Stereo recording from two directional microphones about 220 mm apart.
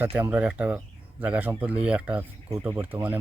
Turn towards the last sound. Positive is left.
turn(degrees=-10)  # may be behind; listen again after turning